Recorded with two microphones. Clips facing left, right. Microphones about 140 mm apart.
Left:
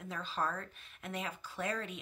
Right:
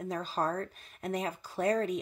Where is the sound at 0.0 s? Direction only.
40° right (ahead or behind).